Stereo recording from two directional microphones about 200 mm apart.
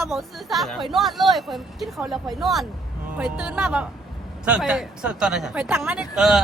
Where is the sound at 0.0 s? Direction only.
Centre (ahead or behind).